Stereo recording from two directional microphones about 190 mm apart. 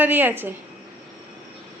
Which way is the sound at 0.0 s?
10° right (ahead or behind).